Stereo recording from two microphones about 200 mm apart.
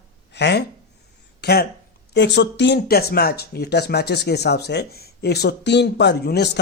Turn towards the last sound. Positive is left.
turn(degrees=55)  # may be behind; listen again after turning